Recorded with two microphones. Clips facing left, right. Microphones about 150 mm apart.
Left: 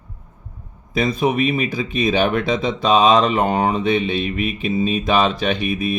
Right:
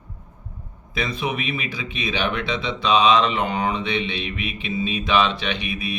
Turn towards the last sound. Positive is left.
turn(degrees=45)  # may be behind; listen again after turning